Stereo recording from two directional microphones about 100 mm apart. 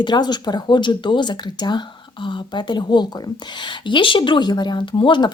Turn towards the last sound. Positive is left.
turn(degrees=55)  # may be behind; listen again after turning